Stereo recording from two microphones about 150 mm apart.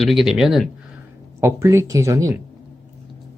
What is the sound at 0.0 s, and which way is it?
Speech, centre (ahead or behind).